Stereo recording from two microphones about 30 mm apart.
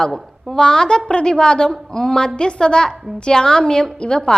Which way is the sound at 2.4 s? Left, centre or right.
Left.